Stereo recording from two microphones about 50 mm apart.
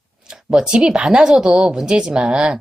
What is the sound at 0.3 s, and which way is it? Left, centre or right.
A woman's voice, centre.